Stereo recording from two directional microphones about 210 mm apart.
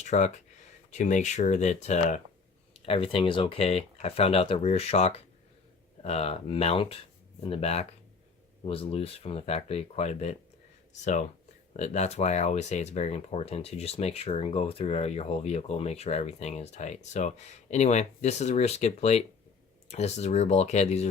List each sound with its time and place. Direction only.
0.0 s speech: 35° left (ahead or behind)